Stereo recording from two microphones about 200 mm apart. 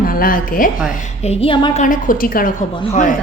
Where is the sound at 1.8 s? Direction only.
40° left (ahead or behind).